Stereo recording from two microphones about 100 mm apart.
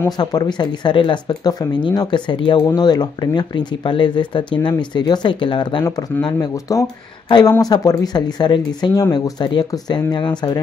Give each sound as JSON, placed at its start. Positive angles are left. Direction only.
{"t": 0.2, "sound": "speech", "side_deg": 45}
{"t": 2.6, "sound": "speech", "side_deg": 40}
{"t": 6.2, "sound": "speech", "side_deg": 40}
{"t": 7.2, "sound": "speech", "side_deg": 45}
{"t": 9.7, "sound": "speech", "side_deg": 40}